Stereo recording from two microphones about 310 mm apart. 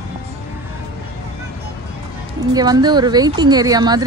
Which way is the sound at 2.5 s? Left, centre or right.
Centre.